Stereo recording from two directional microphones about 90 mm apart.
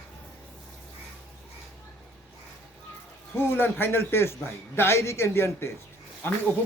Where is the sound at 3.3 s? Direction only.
25° left (ahead or behind).